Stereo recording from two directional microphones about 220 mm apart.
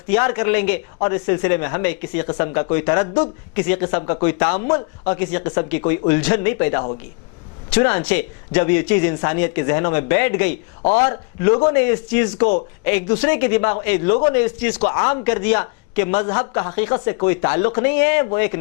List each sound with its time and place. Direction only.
0.1 s speech: 15° left (ahead or behind)